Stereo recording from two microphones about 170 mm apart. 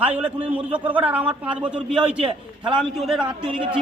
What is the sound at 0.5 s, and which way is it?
A man's voice, 10° right (ahead or behind).